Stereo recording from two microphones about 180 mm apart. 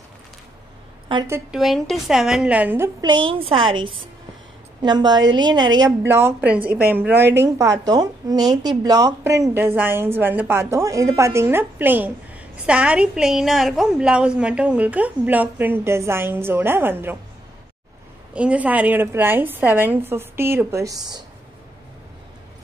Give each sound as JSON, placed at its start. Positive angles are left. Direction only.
{"t": 1.1, "sound": "a woman's voice", "side_deg": -25}
{"t": 1.5, "sound": "a woman's voice", "side_deg": 0}
{"t": 3.0, "sound": "a woman's voice", "side_deg": -25}
{"t": 18.3, "sound": "speech", "side_deg": -5}